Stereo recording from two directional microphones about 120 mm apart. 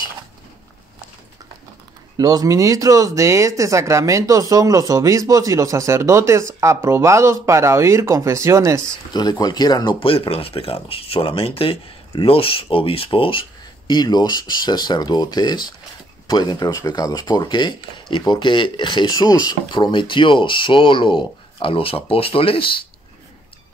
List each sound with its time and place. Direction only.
2.1 s speech: 30° right (ahead or behind)
9.1 s speech: 35° left (ahead or behind)